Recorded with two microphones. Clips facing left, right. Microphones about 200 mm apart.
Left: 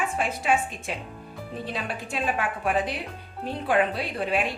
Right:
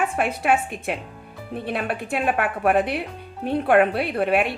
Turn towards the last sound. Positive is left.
turn(degrees=-60)  # may be behind; listen again after turning